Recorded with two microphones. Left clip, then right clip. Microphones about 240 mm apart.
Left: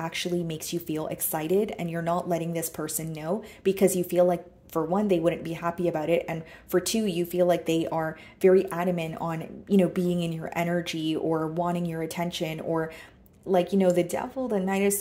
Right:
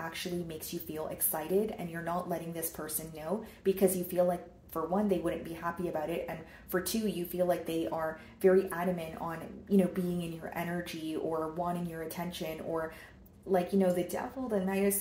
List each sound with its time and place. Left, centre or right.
0.1 s speech: left